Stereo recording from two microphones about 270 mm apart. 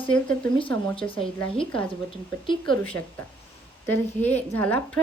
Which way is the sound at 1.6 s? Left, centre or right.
Centre.